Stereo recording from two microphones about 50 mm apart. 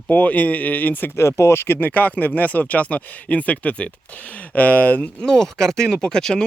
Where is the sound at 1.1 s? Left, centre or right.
Left.